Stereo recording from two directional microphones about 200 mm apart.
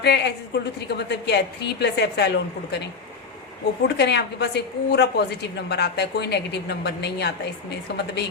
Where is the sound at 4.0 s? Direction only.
55° left (ahead or behind).